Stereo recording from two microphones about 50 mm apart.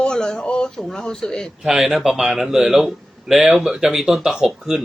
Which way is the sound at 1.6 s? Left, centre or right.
Centre.